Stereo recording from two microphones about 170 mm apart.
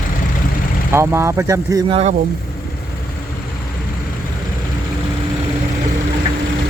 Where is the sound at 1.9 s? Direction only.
40° right (ahead or behind).